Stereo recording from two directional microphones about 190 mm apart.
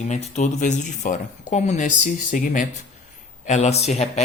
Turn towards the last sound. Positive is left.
turn(degrees=35)  # may be behind; listen again after turning